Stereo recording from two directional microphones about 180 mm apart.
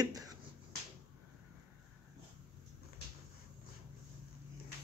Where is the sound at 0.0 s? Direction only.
20° right (ahead or behind).